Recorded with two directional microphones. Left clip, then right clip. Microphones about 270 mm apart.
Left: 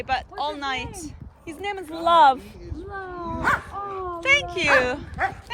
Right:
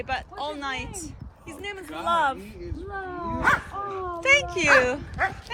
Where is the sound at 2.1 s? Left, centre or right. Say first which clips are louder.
Left 8 dB; left.